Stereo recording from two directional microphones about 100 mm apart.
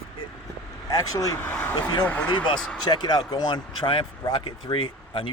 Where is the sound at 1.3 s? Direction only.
15° left (ahead or behind).